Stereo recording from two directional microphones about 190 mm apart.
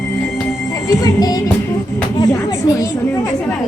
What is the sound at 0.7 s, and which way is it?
Music, 15° left (ahead or behind).